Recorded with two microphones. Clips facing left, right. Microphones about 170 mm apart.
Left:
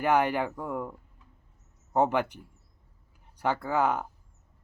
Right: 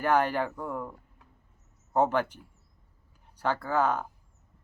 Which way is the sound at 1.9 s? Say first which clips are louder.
Even; 15° left (ahead or behind).